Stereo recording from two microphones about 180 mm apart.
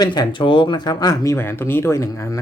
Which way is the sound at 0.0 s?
25° left (ahead or behind).